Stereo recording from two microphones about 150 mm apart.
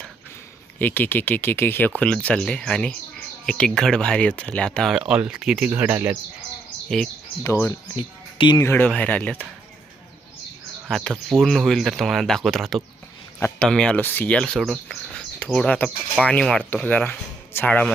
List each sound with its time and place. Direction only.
0.8 s speech: 10° left (ahead or behind); by 6.1 s 10° right (ahead or behind)
6.8 s speech: 5° left (ahead or behind)
7.9 s speech: 30° left (ahead or behind)
8.6 s speech: 10° left (ahead or behind)
10.8 s speech: centre (ahead or behind)